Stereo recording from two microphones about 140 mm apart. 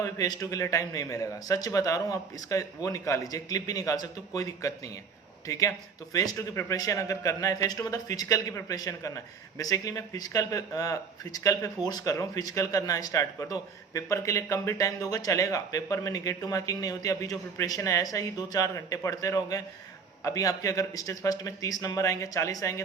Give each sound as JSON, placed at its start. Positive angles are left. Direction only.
{"t": 0.0, "sound": "a man's voice", "side_deg": 25}